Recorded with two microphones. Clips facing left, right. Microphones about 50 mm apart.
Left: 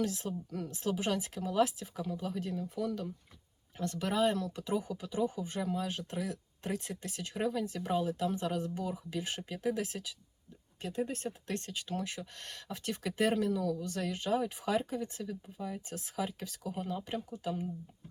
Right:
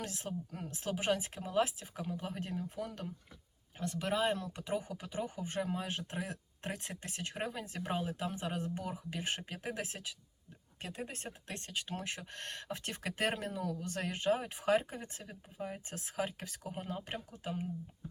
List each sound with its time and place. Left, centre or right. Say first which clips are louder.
0.0 s speech: left 6 dB; right
3.8 s speech: left 3 dB; centre